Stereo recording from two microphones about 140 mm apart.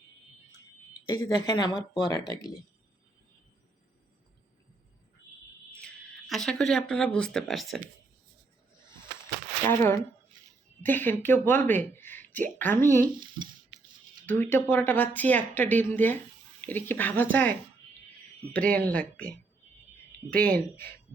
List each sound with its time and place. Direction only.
1.1 s speech: 30° left (ahead or behind)
5.7 s speech: 5° left (ahead or behind)
9.6 s speech: 15° left (ahead or behind)
14.3 s speech: 15° left (ahead or behind)
20.3 s speech: 10° left (ahead or behind)